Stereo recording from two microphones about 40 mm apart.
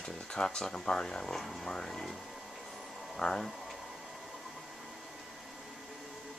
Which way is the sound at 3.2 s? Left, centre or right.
Centre.